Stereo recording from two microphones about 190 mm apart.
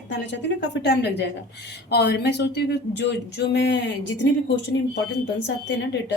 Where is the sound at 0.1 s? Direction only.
70° left (ahead or behind).